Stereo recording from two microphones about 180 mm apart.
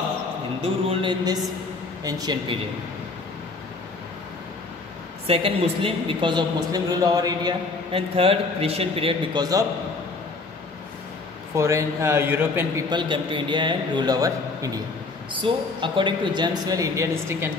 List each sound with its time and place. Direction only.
0.8 s a woman's voice: 25° right (ahead or behind)
5.2 s a woman's voice: 30° right (ahead or behind)
11.5 s speech: 15° right (ahead or behind)
12.9 s a woman's voice: 25° right (ahead or behind)